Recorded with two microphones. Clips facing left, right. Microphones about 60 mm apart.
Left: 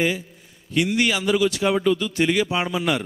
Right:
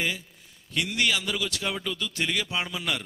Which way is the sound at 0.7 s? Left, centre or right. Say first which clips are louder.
Left 6 dB; centre.